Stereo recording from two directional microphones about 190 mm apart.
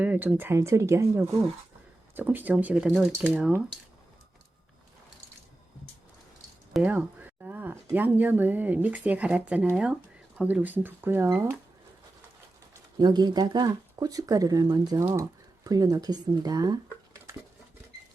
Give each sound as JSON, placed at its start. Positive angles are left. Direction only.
{"t": 0.0, "sound": "speech", "side_deg": -10}
{"t": 6.7, "sound": "a sound", "side_deg": -10}
{"t": 7.9, "sound": "speech", "side_deg": -10}
{"t": 13.0, "sound": "speech", "side_deg": -20}